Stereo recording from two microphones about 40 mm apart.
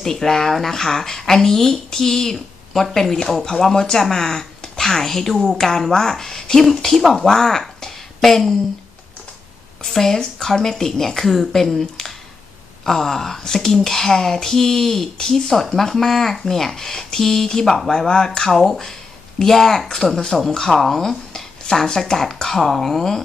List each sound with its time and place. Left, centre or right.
0.0 s a woman's voice: centre
9.8 s speech: centre
18.5 s speech: centre